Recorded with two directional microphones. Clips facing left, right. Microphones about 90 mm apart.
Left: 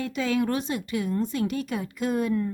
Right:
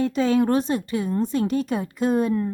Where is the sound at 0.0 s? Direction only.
35° right (ahead or behind).